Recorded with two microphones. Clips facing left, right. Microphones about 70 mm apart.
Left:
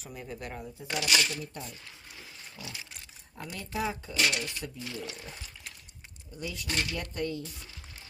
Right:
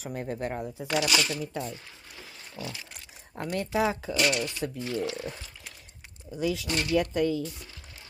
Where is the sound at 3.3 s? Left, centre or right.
Right.